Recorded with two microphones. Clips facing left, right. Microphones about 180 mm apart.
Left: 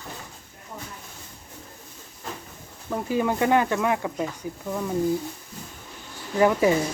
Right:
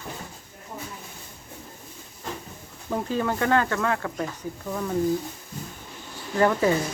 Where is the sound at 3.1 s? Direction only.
15° left (ahead or behind).